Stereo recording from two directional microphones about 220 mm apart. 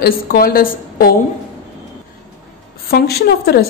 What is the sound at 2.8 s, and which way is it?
Speech, 45° left (ahead or behind).